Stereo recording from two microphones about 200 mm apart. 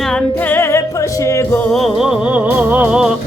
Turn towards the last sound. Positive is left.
turn(degrees=-5)  # may be behind; listen again after turning